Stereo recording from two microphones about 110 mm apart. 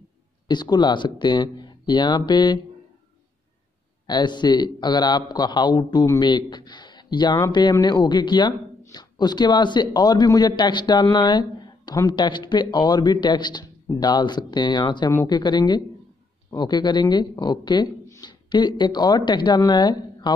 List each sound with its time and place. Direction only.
0.5 s speech: 40° left (ahead or behind)
4.1 s speech: 45° left (ahead or behind)
18.0 s a sound: 30° left (ahead or behind)
18.5 s speech: 45° left (ahead or behind)